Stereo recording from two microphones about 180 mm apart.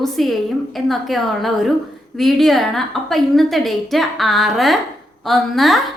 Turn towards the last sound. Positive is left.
turn(degrees=0)  # may be behind; listen again after turning